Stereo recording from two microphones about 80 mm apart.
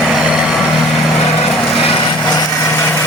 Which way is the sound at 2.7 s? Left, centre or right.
Left.